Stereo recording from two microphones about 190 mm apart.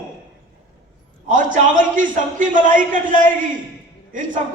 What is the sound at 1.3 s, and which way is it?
A man's voice, 45° right (ahead or behind).